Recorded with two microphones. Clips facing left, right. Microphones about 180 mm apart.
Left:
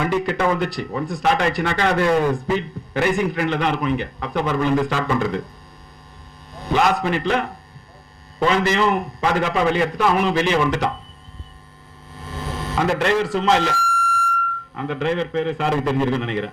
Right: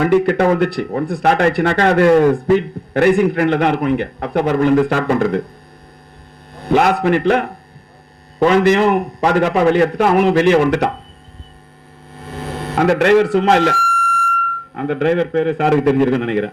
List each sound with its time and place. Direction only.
0.0 s speech: 60° right (ahead or behind)
6.5 s a man's voice: 60° right (ahead or behind)
12.1 s speech: 60° right (ahead or behind)